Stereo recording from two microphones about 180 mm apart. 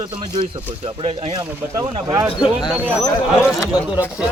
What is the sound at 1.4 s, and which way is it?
Speech, 20° right (ahead or behind).